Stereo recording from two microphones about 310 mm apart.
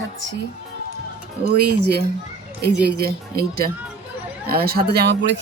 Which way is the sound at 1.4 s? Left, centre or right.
Right.